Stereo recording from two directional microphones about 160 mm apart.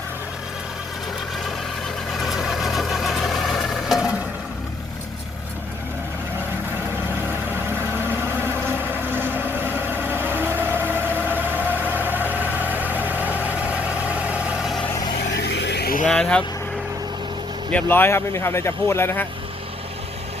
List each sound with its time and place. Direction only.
2.1 s vehicle: centre (ahead or behind)
6.7 s vehicle: 15° right (ahead or behind)
14.8 s vehicle: 20° left (ahead or behind)
15.3 s vehicle: 90° left
16.0 s vehicle: 5° left (ahead or behind)
17.7 s speech: 10° left (ahead or behind)